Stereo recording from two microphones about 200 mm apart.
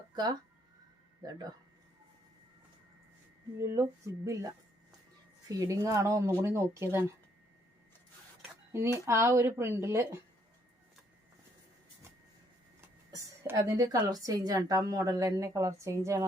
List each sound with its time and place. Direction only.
1.2 s speech: 20° right (ahead or behind)
3.7 s a woman's voice: 15° right (ahead or behind)
8.4 s dishes: 15° right (ahead or behind)
9.0 s a woman's voice: 15° right (ahead or behind)
13.1 s a woman's voice: 15° right (ahead or behind)